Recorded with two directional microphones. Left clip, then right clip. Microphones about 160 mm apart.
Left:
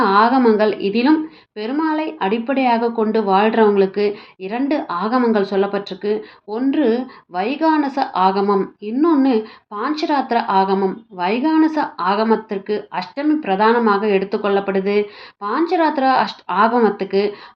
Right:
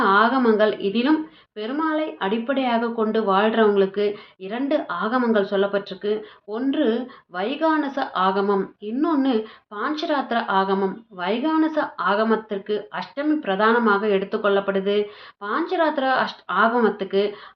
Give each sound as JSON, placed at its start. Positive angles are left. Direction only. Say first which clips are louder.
{"t": 0.0, "sound": "speech", "louder": "left 4 dB", "side_deg": 20}